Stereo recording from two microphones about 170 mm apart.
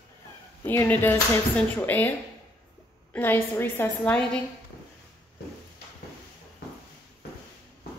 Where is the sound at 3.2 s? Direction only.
15° left (ahead or behind).